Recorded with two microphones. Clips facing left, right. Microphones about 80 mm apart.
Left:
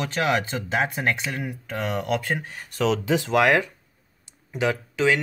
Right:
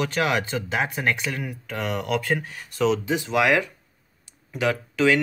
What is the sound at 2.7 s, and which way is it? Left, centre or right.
Speech, left.